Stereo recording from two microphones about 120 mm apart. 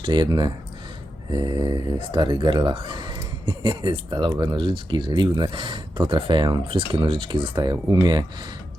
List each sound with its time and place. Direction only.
0.0 s speech: 40° right (ahead or behind)
7.5 s speech: 35° right (ahead or behind)